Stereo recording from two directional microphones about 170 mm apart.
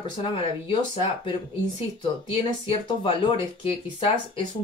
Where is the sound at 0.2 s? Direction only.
30° left (ahead or behind).